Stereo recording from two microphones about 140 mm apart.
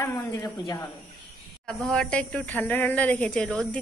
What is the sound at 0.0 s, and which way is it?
Speech, 20° left (ahead or behind).